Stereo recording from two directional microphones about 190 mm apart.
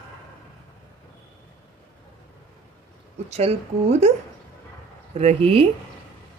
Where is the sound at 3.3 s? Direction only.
35° right (ahead or behind).